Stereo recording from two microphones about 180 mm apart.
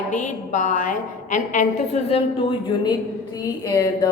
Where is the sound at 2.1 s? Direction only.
25° left (ahead or behind).